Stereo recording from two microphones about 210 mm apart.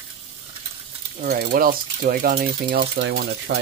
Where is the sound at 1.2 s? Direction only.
45° right (ahead or behind).